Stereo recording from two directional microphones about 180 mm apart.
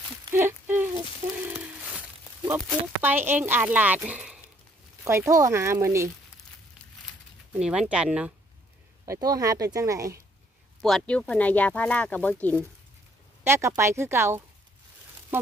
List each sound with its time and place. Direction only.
0.3 s a sound: 15° right (ahead or behind)
3.0 s speech: 10° right (ahead or behind)
5.0 s speech: 15° right (ahead or behind)
7.5 s speech: 5° right (ahead or behind)
9.0 s speech: 20° right (ahead or behind)
10.8 s speech: 5° left (ahead or behind)
13.4 s speech: 15° right (ahead or behind)